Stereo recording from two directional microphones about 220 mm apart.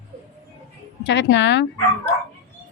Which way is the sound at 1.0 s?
55° left (ahead or behind).